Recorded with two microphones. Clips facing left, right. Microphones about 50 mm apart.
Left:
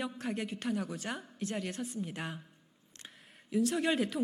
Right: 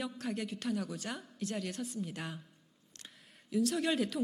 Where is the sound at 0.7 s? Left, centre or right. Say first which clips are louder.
Left 1 dB; centre.